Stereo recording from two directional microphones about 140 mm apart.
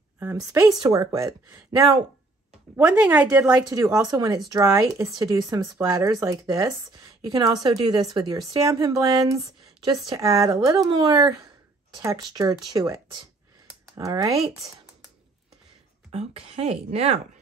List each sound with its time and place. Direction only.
0.5 s a woman's voice: 25° right (ahead or behind)
2.7 s speech: 10° right (ahead or behind)
3.5 s a woman's voice: 30° right (ahead or behind)
16.1 s speech: 45° right (ahead or behind)